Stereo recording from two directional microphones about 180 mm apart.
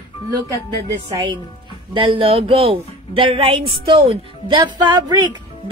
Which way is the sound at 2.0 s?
30° right (ahead or behind).